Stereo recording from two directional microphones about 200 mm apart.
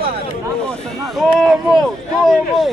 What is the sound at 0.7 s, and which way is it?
Speech, centre (ahead or behind).